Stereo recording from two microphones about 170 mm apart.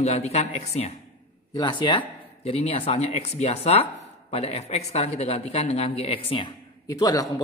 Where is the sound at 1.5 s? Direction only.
25° left (ahead or behind).